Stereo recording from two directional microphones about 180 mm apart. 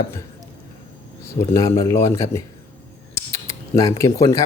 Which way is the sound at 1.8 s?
15° left (ahead or behind).